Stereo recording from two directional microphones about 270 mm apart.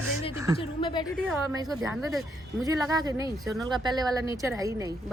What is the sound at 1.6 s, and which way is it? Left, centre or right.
Speech, centre.